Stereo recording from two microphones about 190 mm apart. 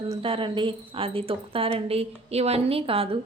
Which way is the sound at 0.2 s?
30° right (ahead or behind).